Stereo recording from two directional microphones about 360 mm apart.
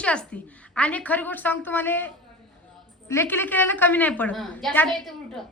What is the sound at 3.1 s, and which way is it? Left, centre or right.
A woman's voice, centre.